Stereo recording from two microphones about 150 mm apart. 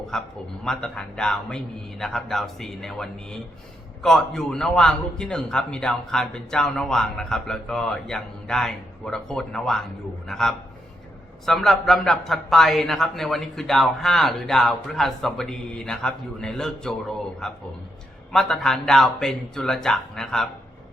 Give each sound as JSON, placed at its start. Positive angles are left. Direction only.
{"t": 0.1, "sound": "a man's voice", "side_deg": 5}